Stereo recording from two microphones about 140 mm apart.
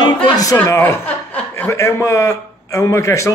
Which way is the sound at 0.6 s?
15° left (ahead or behind).